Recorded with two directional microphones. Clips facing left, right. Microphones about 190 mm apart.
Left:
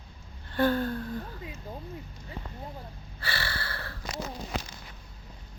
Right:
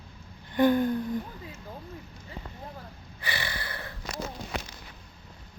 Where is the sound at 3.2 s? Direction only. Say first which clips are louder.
Even; 15° right (ahead or behind).